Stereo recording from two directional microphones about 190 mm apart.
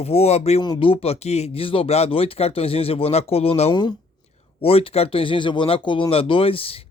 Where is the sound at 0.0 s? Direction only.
35° left (ahead or behind).